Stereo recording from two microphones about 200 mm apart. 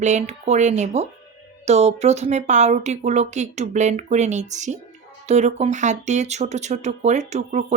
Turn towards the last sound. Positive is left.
turn(degrees=-35)  # may be behind; listen again after turning